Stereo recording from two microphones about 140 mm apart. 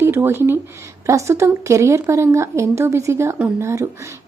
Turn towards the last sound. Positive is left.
turn(degrees=-20)  # may be behind; listen again after turning